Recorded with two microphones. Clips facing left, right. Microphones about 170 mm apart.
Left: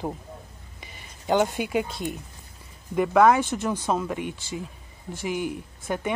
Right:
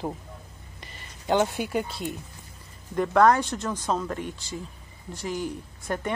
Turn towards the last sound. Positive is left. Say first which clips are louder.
# left 1 dB
turn(degrees=5)  # may be behind; listen again after turning